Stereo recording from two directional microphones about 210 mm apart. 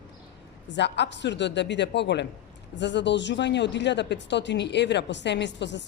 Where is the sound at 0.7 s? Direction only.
55° left (ahead or behind).